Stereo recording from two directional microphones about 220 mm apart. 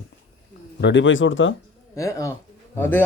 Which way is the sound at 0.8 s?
55° left (ahead or behind).